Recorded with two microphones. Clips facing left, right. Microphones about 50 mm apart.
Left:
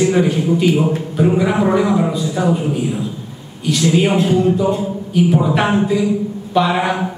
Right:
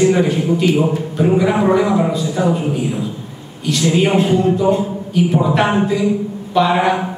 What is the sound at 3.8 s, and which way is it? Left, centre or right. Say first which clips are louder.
Speech: even; centre.